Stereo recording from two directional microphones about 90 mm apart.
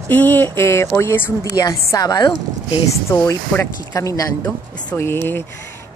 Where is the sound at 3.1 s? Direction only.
35° left (ahead or behind).